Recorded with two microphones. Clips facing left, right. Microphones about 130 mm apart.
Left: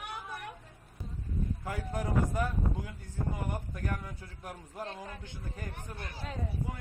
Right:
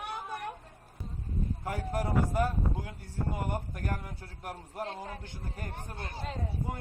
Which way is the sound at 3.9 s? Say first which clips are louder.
Right 1 dB; 35° right (ahead or behind).